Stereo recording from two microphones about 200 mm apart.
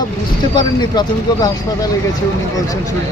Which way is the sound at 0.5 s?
20° left (ahead or behind).